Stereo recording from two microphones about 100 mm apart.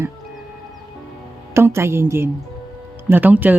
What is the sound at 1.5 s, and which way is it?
A woman's voice, 25° right (ahead or behind).